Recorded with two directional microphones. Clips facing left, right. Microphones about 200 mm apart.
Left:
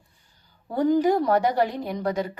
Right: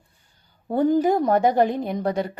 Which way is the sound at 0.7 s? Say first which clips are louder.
Right 1 dB; 25° right (ahead or behind).